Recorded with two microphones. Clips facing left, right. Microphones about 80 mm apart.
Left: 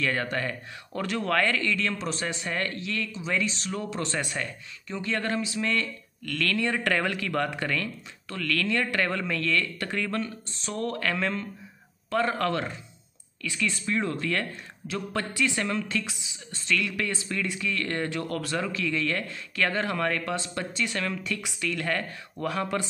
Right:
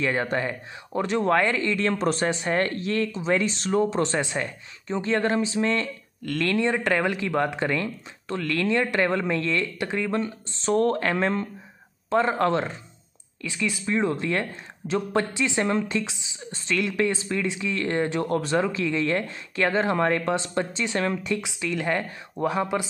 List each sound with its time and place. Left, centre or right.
0.0 s speech: right
2.0 s speech: right
3.8 s speech: right